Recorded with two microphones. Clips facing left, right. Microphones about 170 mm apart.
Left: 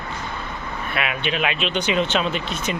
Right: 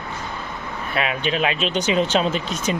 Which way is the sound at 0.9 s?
35° right (ahead or behind).